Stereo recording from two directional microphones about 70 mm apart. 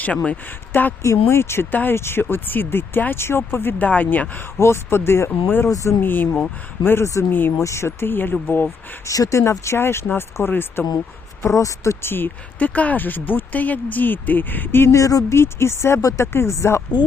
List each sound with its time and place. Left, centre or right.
0.3 s speech: left
1.0 s speech: left
4.5 s speech: left
7.6 s speech: left
9.0 s speech: left
9.4 s speech: left
11.4 s speech: left
12.1 s speech: left
14.9 s speech: left
15.4 s speech: left